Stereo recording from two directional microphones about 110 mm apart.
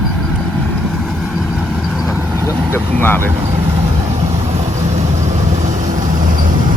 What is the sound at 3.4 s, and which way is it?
Vehicle, 65° right (ahead or behind).